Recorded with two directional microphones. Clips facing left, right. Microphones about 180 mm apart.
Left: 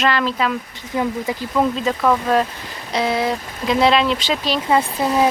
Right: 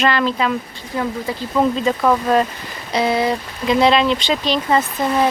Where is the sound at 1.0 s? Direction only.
15° left (ahead or behind).